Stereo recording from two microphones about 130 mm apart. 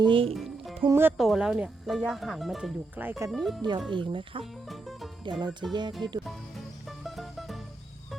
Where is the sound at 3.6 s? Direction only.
35° right (ahead or behind).